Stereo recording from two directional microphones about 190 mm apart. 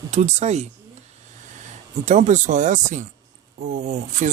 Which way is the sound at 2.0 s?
40° right (ahead or behind).